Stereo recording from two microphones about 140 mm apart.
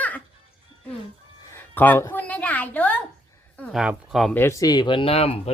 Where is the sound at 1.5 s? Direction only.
15° left (ahead or behind).